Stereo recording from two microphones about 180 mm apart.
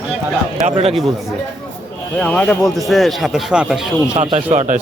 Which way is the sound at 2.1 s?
5° left (ahead or behind).